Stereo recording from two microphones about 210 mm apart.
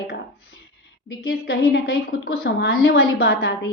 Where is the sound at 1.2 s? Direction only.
50° left (ahead or behind).